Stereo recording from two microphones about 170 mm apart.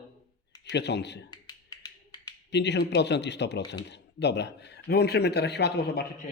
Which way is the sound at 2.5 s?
90° left.